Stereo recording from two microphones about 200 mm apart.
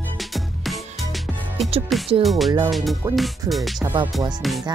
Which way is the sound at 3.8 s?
25° right (ahead or behind).